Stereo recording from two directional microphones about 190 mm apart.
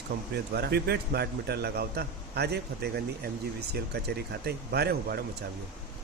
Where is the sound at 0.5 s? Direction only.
60° right (ahead or behind).